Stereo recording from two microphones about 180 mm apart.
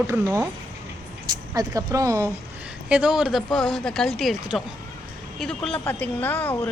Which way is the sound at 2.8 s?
5° right (ahead or behind).